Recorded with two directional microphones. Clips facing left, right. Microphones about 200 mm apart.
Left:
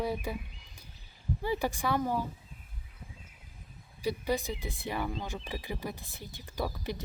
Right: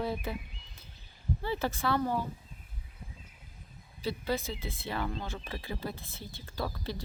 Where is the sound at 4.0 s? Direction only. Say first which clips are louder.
Left 2 dB; 15° left (ahead or behind).